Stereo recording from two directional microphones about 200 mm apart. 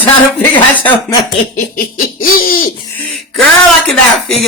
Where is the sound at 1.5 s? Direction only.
45° left (ahead or behind).